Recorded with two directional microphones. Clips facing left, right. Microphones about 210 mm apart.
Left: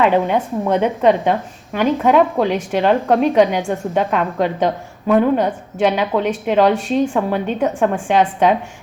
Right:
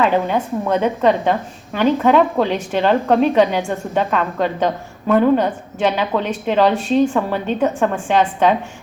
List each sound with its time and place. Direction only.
0.0 s a woman's voice: 15° left (ahead or behind)